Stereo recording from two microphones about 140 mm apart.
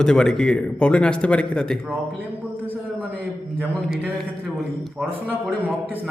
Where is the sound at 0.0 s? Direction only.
5° left (ahead or behind).